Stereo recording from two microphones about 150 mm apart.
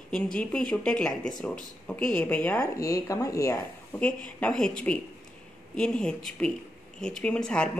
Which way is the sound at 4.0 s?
5° left (ahead or behind).